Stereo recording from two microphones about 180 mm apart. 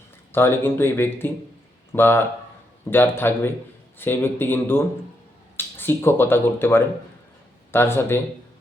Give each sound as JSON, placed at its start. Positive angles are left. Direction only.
{"t": 0.3, "sound": "speech", "side_deg": 10}